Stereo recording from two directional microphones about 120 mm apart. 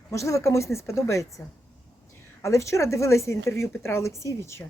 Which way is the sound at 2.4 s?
25° left (ahead or behind).